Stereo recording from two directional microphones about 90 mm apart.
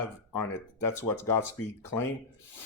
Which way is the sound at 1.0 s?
30° left (ahead or behind).